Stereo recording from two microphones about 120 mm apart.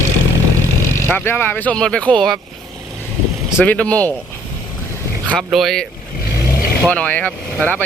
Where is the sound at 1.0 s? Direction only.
15° left (ahead or behind).